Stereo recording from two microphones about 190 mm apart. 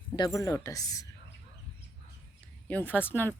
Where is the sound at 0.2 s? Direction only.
20° left (ahead or behind).